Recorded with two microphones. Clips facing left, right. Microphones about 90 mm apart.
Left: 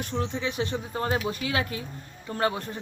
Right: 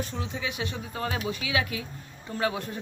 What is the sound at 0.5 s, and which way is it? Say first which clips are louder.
A man's voice: left 4 dB; 40° left (ahead or behind).